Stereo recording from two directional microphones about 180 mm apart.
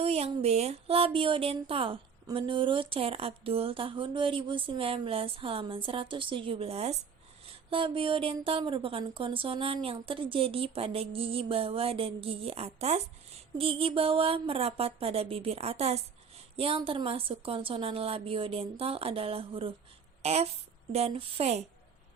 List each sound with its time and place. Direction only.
0.0 s a woman's voice: 35° right (ahead or behind)